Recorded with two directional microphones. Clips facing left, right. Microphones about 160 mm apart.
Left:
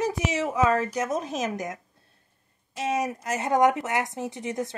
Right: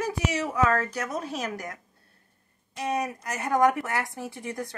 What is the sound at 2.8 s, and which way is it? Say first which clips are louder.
Speech: left 2 dB; 25° left (ahead or behind).